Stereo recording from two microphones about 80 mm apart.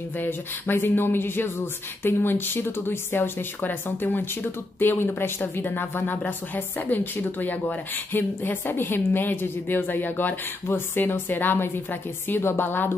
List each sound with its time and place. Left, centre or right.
0.2 s speech: left